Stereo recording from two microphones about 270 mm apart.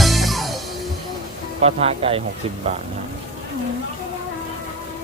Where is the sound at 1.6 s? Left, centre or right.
Right.